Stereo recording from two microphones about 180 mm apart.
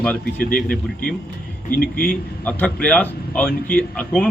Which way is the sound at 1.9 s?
50° left (ahead or behind).